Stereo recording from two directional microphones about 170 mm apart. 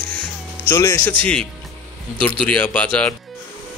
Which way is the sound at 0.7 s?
15° left (ahead or behind).